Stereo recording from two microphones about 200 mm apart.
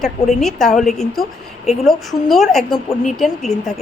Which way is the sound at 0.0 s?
Centre (ahead or behind).